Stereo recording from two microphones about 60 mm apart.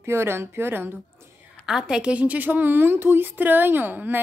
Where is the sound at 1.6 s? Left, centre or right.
Centre.